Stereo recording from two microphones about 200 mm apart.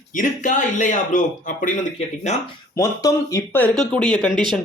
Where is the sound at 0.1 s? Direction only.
40° left (ahead or behind).